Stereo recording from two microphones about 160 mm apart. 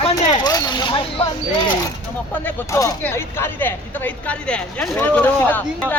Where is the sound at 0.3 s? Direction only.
25° left (ahead or behind).